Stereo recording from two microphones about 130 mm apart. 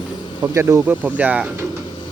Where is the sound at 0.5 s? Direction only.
20° right (ahead or behind).